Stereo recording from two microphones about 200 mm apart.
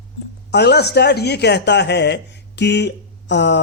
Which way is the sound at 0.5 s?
55° left (ahead or behind).